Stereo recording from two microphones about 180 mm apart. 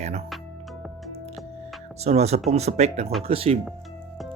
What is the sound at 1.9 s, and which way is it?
Speech, 35° right (ahead or behind).